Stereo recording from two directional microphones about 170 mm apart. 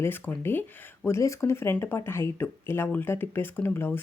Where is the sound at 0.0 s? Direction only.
15° left (ahead or behind).